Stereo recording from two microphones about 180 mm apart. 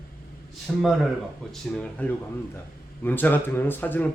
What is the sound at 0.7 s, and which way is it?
Speech, centre (ahead or behind).